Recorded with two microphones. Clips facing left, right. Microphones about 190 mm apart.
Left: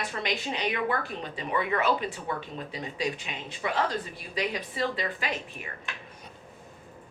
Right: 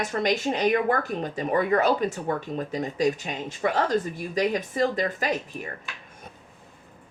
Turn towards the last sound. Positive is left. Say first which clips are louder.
# right 6 dB
turn(degrees=-40)  # may be behind; listen again after turning